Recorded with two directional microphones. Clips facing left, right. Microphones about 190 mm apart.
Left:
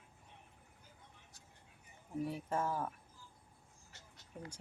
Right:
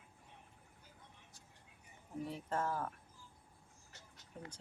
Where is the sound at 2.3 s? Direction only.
10° left (ahead or behind).